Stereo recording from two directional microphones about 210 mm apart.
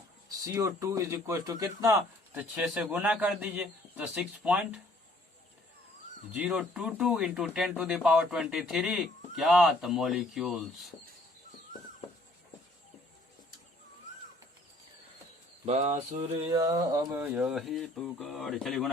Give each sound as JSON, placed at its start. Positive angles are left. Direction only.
{"t": 0.4, "sound": "speech", "side_deg": -15}
{"t": 6.3, "sound": "speech", "side_deg": -5}
{"t": 15.6, "sound": "a sound", "side_deg": -30}
{"t": 16.5, "sound": "speech", "side_deg": -20}
{"t": 17.3, "sound": "speech", "side_deg": 0}